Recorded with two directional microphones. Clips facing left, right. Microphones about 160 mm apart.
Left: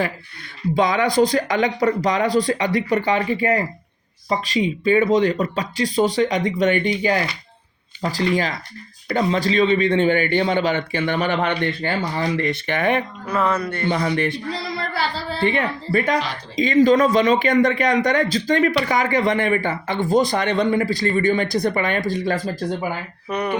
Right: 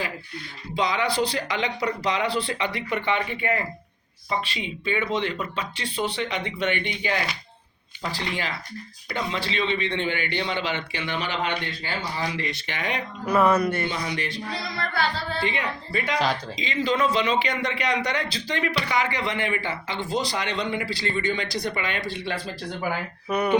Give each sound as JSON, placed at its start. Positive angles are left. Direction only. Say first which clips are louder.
{"t": 0.8, "sound": "a man's voice", "louder": "left 7 dB", "side_deg": 50}
{"t": 13.2, "sound": "music", "louder": "right 5 dB", "side_deg": -10}
{"t": 13.8, "sound": "speech", "louder": "left 8 dB", "side_deg": 55}
{"t": 14.9, "sound": "music", "louder": "even", "side_deg": 30}
{"t": 15.4, "sound": "a man's voice", "louder": "left 8 dB", "side_deg": 55}
{"t": 23.3, "sound": "a sound", "louder": "even", "side_deg": -5}